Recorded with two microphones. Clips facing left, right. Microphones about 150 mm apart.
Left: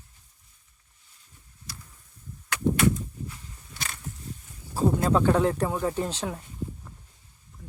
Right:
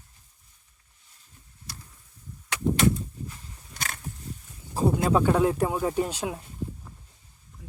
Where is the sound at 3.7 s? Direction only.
50° right (ahead or behind).